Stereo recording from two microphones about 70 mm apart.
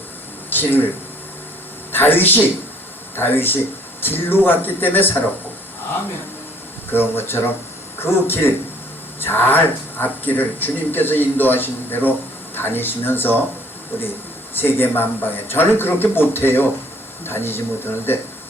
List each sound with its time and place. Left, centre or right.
0.5 s speech: left
1.9 s speech: left
6.9 s speech: left
14.6 s speech: left